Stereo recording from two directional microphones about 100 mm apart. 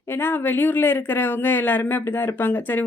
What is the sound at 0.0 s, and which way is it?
Speech, 20° left (ahead or behind).